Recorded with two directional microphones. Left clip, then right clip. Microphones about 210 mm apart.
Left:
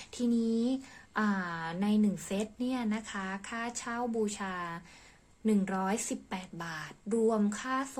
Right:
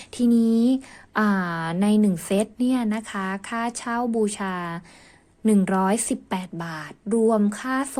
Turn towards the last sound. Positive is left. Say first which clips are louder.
# right 8 dB
turn(degrees=-35)  # may be behind; listen again after turning